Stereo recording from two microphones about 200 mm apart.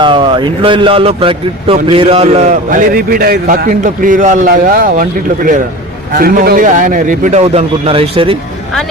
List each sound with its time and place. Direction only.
0.0 s a man's voice: 25° right (ahead or behind)